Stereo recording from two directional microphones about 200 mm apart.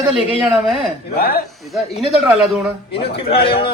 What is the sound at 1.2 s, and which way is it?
Speech, 50° left (ahead or behind).